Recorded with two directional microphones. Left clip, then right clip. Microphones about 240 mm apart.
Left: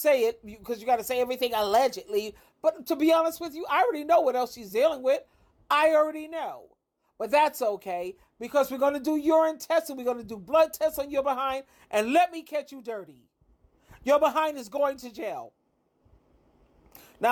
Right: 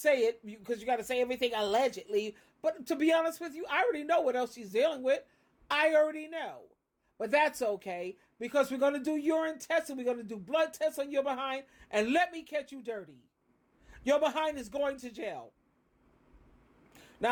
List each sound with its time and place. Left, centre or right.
0.0 s a woman's voice: left
1.7 s speech: centre
2.1 s a woman's voice: centre
14.0 s a woman's voice: centre